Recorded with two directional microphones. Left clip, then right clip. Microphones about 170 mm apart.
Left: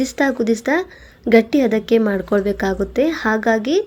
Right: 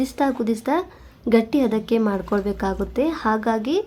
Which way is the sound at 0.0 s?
20° left (ahead or behind).